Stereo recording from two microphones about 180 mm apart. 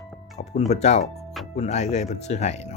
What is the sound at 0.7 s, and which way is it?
Speech, 40° left (ahead or behind).